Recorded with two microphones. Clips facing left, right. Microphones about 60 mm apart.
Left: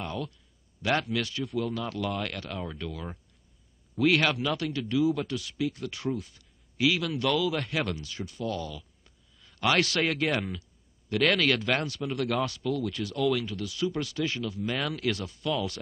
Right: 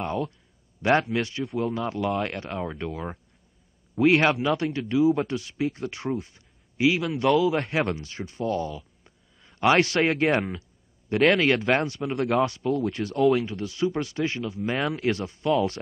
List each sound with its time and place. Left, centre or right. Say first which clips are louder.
0.0 s speech: right 6 dB; right